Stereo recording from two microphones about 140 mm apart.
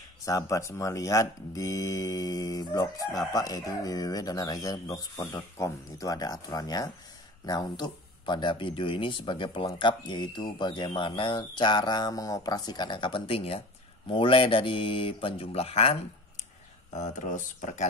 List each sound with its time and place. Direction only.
0.2 s speech: 25° left (ahead or behind); by 16.0 s 45° left (ahead or behind)
16.9 s speech: 60° left (ahead or behind)